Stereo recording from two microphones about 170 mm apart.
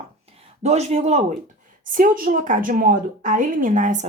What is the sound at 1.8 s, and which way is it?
A woman's voice, 55° right (ahead or behind).